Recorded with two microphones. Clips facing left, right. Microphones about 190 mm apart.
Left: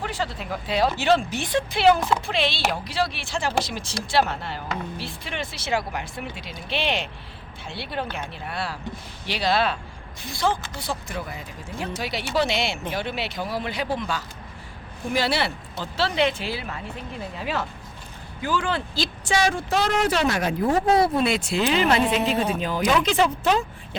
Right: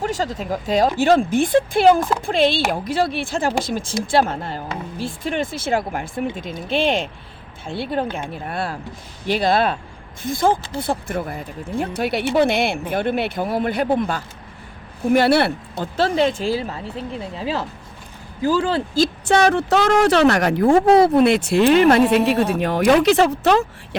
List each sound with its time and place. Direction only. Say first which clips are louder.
0.0 s speech: right 6 dB; 40° right (ahead or behind)
2.0 s a woman's voice: right 3 dB; centre (ahead or behind)
2.2 s speech: right 7 dB; 50° right (ahead or behind); by 21.0 s 75° right (ahead or behind)
21.2 s speech: right 8 dB; 60° right (ahead or behind)
22.2 s a woman's voice: right 6 dB; 5° right (ahead or behind)
22.5 s speech: right 7 dB; 65° right (ahead or behind); by 23.3 s 45° right (ahead or behind)
23.4 s speech: right 6 dB; 75° right (ahead or behind)